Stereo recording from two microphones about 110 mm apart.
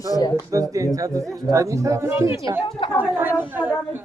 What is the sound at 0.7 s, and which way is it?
Speech, 30° right (ahead or behind).